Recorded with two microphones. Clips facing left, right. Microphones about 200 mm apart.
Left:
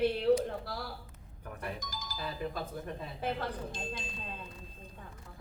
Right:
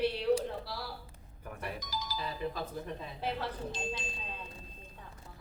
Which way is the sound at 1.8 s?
50° left (ahead or behind).